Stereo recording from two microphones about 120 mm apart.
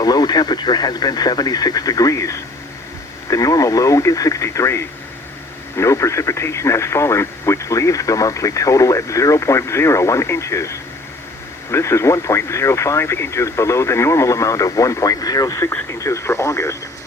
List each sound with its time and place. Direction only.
0.0 s speech: 35° left (ahead or behind)